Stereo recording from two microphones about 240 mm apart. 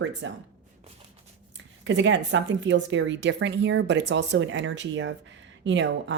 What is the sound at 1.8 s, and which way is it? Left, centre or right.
Speech, right.